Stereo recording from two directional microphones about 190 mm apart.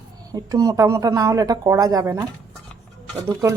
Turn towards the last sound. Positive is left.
turn(degrees=-20)  # may be behind; listen again after turning